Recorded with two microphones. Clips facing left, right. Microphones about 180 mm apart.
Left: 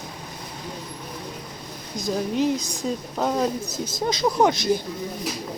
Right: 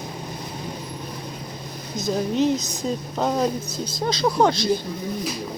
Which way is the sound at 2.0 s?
10° left (ahead or behind).